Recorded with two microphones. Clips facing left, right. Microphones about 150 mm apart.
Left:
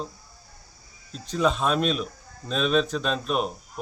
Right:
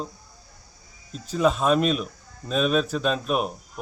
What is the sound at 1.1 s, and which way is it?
A man's voice, 5° right (ahead or behind).